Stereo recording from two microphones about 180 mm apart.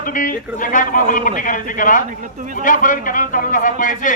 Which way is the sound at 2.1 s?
45° right (ahead or behind).